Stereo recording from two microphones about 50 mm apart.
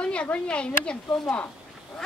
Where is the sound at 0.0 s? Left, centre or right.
Left.